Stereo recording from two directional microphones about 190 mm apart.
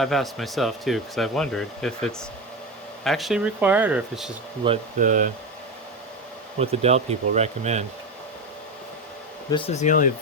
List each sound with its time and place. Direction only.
0.0 s speech: centre (ahead or behind)
4.6 s speech: 25° right (ahead or behind)
4.9 s speech: 40° right (ahead or behind)
6.6 s speech: 35° right (ahead or behind)
9.5 s speech: 30° left (ahead or behind)